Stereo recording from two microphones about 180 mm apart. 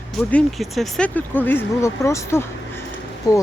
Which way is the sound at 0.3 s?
5° left (ahead or behind).